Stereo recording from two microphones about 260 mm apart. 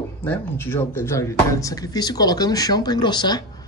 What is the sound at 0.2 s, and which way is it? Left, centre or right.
Speech, centre.